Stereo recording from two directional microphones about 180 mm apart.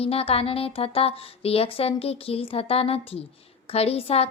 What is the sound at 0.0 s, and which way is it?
A woman's voice, 35° left (ahead or behind).